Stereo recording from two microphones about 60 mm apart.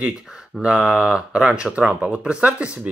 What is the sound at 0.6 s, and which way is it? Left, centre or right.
Speech, centre.